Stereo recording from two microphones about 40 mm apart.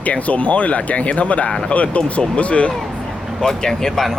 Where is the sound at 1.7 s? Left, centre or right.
Left.